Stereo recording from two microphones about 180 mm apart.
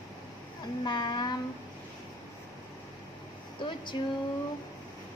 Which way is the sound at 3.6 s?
25° left (ahead or behind).